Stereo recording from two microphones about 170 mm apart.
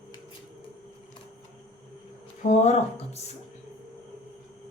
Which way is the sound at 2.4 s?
45° left (ahead or behind).